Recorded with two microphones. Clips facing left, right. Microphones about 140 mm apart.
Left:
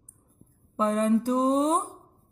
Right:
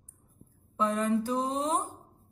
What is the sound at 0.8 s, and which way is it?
Speech, 40° left (ahead or behind).